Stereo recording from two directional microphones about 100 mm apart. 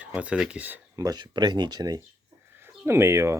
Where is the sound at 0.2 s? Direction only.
10° right (ahead or behind).